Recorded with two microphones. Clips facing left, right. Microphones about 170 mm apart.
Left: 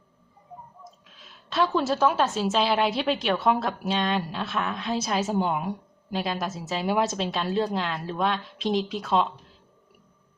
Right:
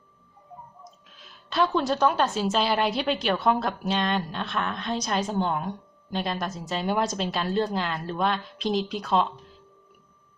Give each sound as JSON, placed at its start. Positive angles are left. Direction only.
{"t": 1.2, "sound": "a woman's voice", "side_deg": 0}